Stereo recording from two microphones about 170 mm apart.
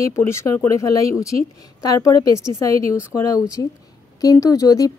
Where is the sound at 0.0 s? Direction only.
15° left (ahead or behind).